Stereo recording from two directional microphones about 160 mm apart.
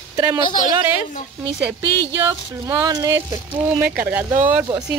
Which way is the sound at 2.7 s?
25° right (ahead or behind).